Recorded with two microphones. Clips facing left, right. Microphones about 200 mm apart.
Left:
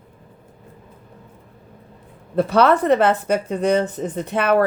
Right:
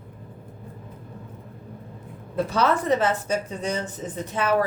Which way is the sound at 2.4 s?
65° left (ahead or behind).